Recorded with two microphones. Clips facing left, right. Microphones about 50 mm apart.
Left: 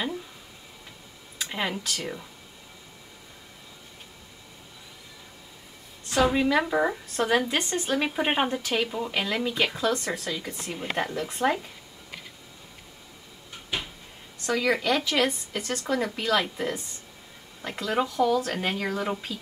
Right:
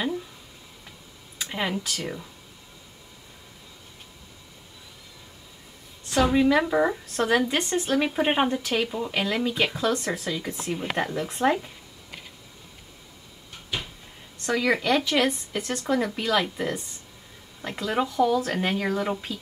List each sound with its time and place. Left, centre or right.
1.4 s speech: centre
6.0 s speech: centre
14.4 s speech: centre